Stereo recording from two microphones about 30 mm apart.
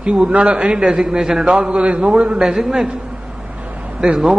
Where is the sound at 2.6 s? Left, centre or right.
Right.